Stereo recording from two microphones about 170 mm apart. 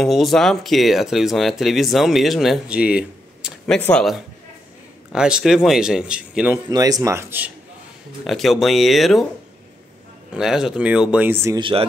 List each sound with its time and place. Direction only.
0.0 s speech: centre (ahead or behind)
6.7 s speech: 20° right (ahead or behind)
8.3 s speech: centre (ahead or behind)
10.3 s speech: 5° right (ahead or behind)